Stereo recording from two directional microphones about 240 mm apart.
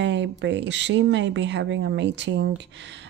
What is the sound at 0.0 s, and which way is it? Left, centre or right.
Speech, right.